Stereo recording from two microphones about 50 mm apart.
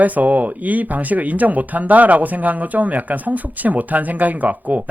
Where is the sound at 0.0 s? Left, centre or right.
Right.